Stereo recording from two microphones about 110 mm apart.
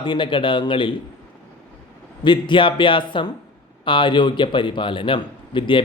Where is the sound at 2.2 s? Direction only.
45° left (ahead or behind).